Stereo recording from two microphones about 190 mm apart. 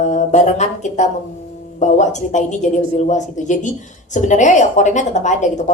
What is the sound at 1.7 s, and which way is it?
A woman's voice, 40° left (ahead or behind).